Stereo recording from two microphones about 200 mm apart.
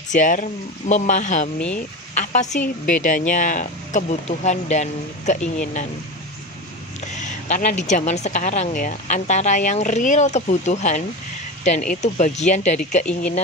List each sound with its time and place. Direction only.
0.1 s a woman's voice: 40° left (ahead or behind)
7.2 s a woman's voice: 40° left (ahead or behind)